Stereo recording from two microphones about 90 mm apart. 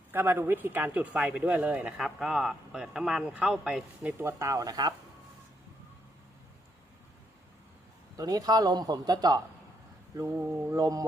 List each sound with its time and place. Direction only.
0.1 s a man's voice: 25° right (ahead or behind)
2.0 s speech: 5° right (ahead or behind)
4.2 s speech: 35° right (ahead or behind)
8.1 s a man's voice: 45° right (ahead or behind)
10.7 s speech: 40° right (ahead or behind)